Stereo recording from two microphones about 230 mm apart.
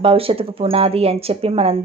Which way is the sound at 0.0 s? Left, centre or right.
Right.